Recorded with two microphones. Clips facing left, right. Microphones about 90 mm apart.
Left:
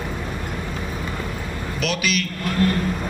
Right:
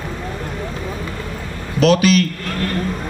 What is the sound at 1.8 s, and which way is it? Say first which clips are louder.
Speech: right 11 dB; 35° right (ahead or behind).